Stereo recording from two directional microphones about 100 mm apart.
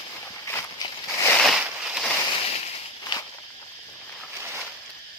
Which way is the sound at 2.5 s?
90° left.